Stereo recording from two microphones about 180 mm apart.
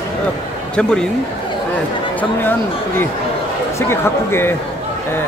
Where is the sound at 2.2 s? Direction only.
10° left (ahead or behind).